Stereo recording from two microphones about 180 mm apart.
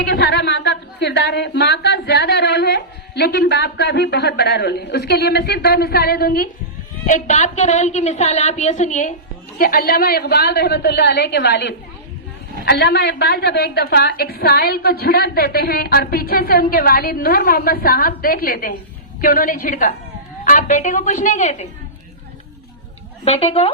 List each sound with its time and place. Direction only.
0.0 s a woman's voice: 65° left (ahead or behind)
7.0 s a woman's voice: 45° left (ahead or behind)
9.6 s a woman's voice: 55° left (ahead or behind)
23.2 s a woman's voice: 35° left (ahead or behind)